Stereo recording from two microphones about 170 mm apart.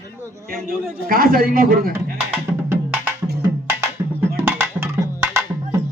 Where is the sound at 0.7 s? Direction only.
55° right (ahead or behind).